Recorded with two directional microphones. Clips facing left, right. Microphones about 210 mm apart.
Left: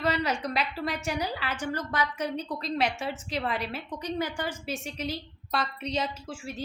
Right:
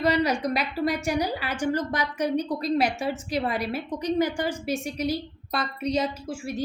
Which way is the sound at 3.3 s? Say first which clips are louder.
Right 3 dB; 40° right (ahead or behind).